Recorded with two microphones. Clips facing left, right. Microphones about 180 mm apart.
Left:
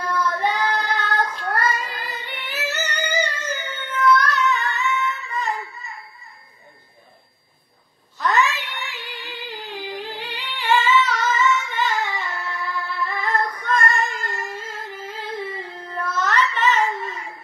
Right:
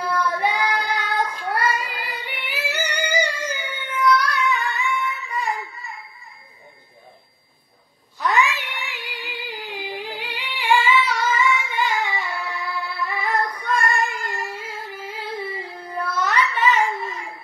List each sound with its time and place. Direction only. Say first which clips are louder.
0.0 s child singing: even; 10° right (ahead or behind)
8.2 s cat: even; 10° right (ahead or behind)
15.5 s a sound: right 1 dB; 10° right (ahead or behind)